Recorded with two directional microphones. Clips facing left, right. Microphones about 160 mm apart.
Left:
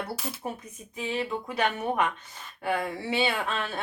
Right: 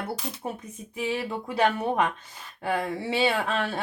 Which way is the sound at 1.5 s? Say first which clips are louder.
Right 6 dB; 30° right (ahead or behind).